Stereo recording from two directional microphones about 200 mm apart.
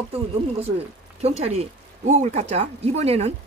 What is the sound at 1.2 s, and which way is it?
Speech, 30° right (ahead or behind).